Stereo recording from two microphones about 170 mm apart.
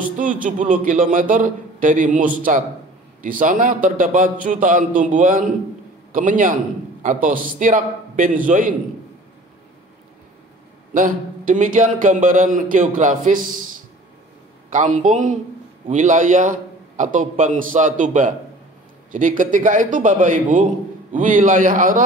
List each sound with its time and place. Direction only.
0.2 s a man's voice: 50° right (ahead or behind)
10.9 s a man's voice: 50° right (ahead or behind)
14.7 s a man's voice: 50° right (ahead or behind)